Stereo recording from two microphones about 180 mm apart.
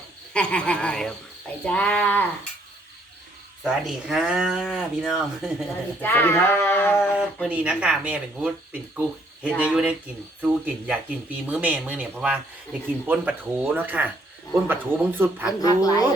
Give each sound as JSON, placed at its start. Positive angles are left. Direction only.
{"t": 0.3, "sound": "speech", "side_deg": 5}
{"t": 3.6, "sound": "speech", "side_deg": -5}
{"t": 6.0, "sound": "speech", "side_deg": 10}
{"t": 7.4, "sound": "speech", "side_deg": -5}
{"t": 15.6, "sound": "a woman's voice", "side_deg": 20}